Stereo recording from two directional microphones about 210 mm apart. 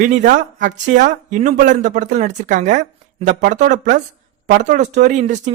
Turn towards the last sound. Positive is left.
turn(degrees=-35)  # may be behind; listen again after turning